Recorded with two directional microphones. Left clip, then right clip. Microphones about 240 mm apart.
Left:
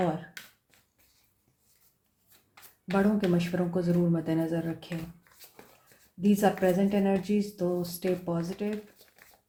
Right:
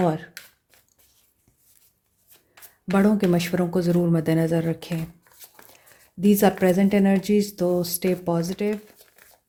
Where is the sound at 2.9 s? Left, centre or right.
Right.